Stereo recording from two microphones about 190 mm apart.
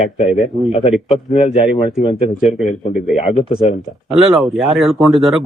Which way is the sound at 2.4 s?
Centre (ahead or behind).